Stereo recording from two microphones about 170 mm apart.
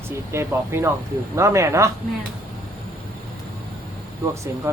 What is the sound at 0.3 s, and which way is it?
Speech, 15° right (ahead or behind).